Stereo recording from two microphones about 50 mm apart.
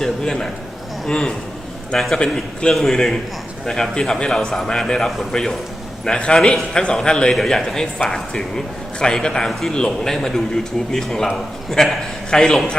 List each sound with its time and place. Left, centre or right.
0.0 s a man's voice: centre
2.7 s a man's voice: centre
9.5 s a man's voice: centre